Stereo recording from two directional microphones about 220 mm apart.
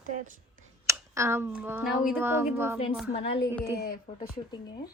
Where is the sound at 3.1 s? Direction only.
25° left (ahead or behind).